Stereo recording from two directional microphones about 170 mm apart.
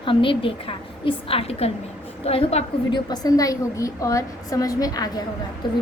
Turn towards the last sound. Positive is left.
turn(degrees=25)  # may be behind; listen again after turning